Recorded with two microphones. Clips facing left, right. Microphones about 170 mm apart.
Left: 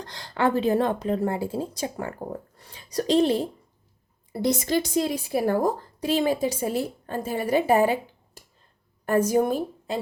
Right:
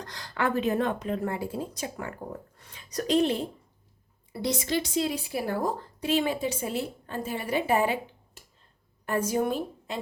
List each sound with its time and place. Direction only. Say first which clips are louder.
0.0 s speech: left 5 dB; 30° left (ahead or behind)
4.3 s speech: left 5 dB; 45° left (ahead or behind)
9.0 s a woman's voice: left 5 dB; 45° left (ahead or behind)